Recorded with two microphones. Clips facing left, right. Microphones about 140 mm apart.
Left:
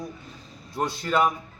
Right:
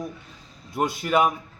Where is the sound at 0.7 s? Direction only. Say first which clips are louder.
Right 2 dB; 10° right (ahead or behind).